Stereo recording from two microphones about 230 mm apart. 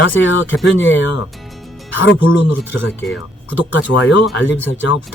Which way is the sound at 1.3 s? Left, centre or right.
Centre.